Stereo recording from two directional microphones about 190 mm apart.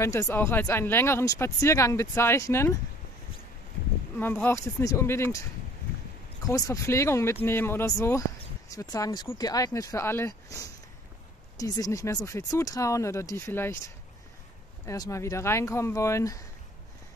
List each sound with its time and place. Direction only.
0.0 s speech: 15° left (ahead or behind)
4.2 s speech: 10° left (ahead or behind)
6.4 s speech: 15° left (ahead or behind)